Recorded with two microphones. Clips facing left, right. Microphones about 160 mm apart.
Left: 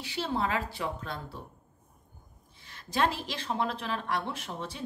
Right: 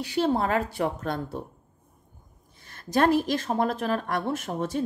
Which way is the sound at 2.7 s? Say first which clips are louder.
Right 8 dB; 50° right (ahead or behind).